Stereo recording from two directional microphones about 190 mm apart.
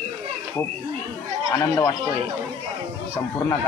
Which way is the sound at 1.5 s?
15° left (ahead or behind).